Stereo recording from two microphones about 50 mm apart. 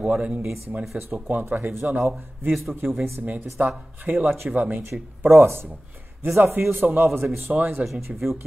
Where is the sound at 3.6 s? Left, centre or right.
Right.